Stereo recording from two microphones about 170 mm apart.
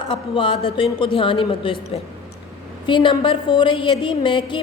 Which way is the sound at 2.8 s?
30° left (ahead or behind).